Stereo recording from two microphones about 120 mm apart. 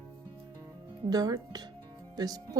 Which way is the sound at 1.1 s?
30° right (ahead or behind).